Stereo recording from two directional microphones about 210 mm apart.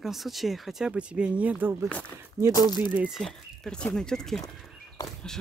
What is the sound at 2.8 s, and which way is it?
A man's voice, 5° right (ahead or behind).